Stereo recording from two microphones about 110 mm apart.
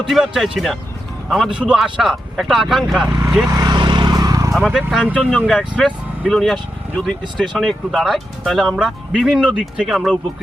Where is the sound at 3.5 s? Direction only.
35° right (ahead or behind).